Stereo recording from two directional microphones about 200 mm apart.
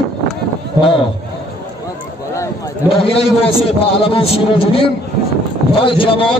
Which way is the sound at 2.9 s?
25° left (ahead or behind).